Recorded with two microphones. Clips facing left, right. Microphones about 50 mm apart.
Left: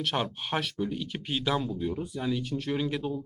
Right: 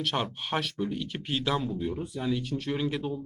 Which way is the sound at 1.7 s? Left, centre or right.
Right.